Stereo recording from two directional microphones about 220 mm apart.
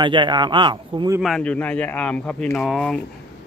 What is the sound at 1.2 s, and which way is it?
A man's voice, centre (ahead or behind).